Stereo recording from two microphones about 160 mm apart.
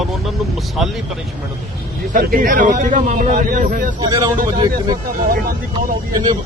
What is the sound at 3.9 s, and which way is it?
Speech, 25° right (ahead or behind).